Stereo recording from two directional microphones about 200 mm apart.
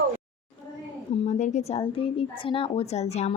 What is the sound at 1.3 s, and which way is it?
Speech, 35° left (ahead or behind).